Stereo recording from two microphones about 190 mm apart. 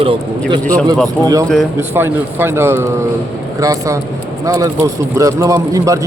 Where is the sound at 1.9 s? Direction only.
10° right (ahead or behind).